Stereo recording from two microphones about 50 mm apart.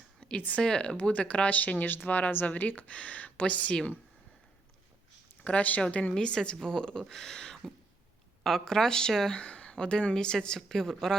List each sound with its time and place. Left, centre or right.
0.2 s a sound: centre
0.6 s a woman's voice: centre
5.4 s a woman's voice: left
6.1 s a woman's voice: centre
9.4 s a woman's voice: left